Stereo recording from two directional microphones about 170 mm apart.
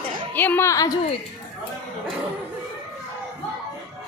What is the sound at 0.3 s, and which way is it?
Speech, 10° left (ahead or behind).